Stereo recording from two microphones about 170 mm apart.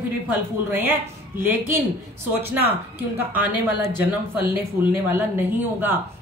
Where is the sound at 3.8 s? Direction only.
15° right (ahead or behind).